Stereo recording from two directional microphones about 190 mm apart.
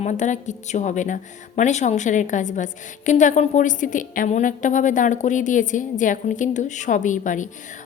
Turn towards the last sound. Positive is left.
turn(degrees=40)  # may be behind; listen again after turning